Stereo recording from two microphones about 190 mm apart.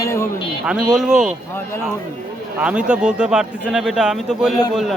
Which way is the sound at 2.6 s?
5° right (ahead or behind).